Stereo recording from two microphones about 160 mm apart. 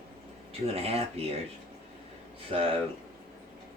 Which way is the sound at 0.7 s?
40° right (ahead or behind).